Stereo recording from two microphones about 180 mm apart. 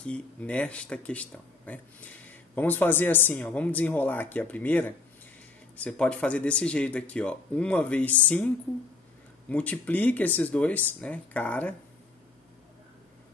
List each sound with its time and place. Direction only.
0.0 s speech: 5° left (ahead or behind)
9.5 s speech: 10° left (ahead or behind)